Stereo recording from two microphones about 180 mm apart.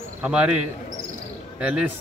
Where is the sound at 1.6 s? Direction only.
5° right (ahead or behind).